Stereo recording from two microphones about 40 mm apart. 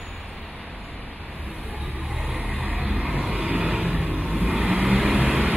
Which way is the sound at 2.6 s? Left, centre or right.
Right.